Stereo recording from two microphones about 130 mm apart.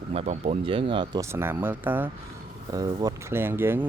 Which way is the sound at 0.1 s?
55° right (ahead or behind).